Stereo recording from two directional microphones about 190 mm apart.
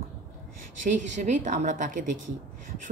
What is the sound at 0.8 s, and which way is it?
A woman's voice, 40° right (ahead or behind).